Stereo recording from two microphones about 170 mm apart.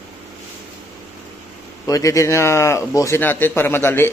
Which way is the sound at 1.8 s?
20° left (ahead or behind).